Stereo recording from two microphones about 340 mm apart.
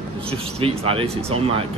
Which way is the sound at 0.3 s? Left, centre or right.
Centre.